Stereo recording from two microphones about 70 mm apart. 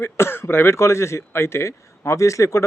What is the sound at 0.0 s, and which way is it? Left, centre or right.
Speech, left.